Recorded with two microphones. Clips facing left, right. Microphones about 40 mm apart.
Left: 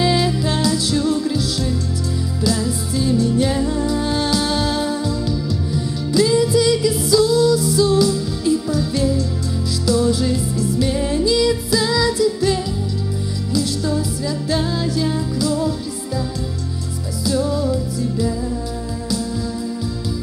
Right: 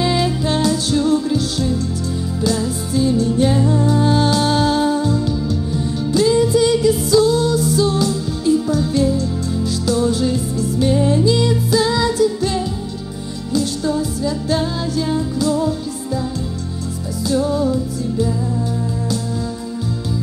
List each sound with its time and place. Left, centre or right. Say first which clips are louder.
0.0 s music: even; right
3.5 s music: right 3 dB; centre
3.8 s music: right 4 dB; right
15.3 s music: right 2 dB; right
17.2 s music: right 2 dB; right